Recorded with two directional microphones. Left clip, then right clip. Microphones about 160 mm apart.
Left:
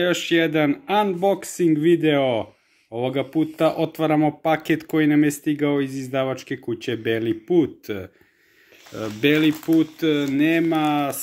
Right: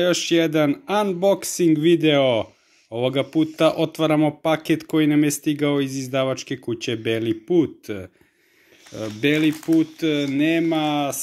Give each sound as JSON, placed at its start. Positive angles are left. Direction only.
{"t": 0.0, "sound": "speech", "side_deg": -40}
{"t": 9.2, "sound": "speech", "side_deg": -25}